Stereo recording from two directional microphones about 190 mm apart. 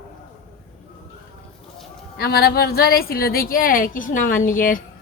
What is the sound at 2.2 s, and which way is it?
A woman's voice, 55° left (ahead or behind).